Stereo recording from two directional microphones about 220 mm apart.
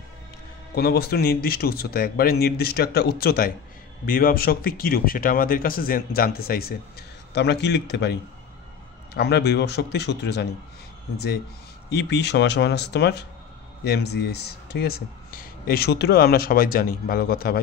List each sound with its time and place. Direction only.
0.7 s speech: 45° left (ahead or behind)